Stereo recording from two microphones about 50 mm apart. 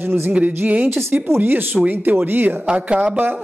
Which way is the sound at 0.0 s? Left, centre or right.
Right.